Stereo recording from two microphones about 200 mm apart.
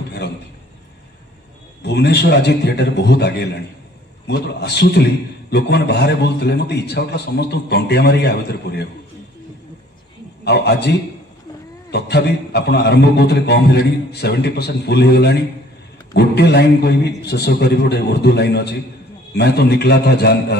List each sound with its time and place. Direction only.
0.2 s a man's voice: 55° left (ahead or behind)
1.8 s a man's voice: 55° left (ahead or behind)
10.4 s a man's voice: 55° left (ahead or behind)